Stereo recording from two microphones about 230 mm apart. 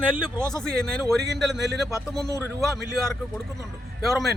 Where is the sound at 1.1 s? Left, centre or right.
Right.